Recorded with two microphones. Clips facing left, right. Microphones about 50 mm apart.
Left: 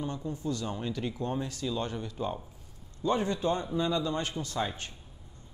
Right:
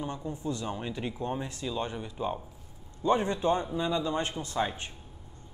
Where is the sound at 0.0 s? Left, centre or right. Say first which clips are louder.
Even; centre.